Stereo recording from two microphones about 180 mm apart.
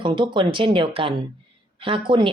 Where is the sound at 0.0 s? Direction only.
30° right (ahead or behind).